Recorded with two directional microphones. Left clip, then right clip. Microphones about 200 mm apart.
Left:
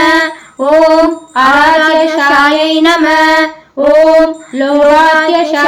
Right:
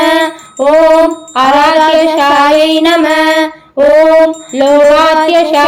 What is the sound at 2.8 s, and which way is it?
Child singing, 10° right (ahead or behind).